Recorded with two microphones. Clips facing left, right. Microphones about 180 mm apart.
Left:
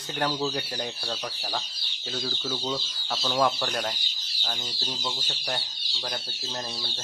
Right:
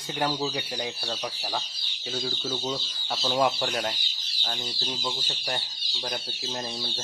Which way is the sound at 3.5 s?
5° right (ahead or behind).